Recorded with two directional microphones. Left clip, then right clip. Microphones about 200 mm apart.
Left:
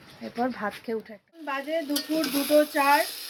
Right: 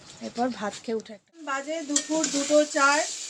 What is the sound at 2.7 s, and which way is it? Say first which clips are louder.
Speech: even; 5° right (ahead or behind).